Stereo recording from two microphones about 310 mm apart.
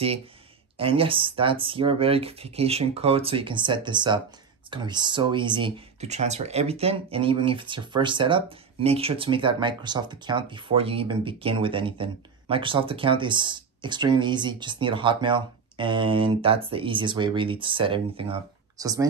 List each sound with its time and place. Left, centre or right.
0.7 s speech: centre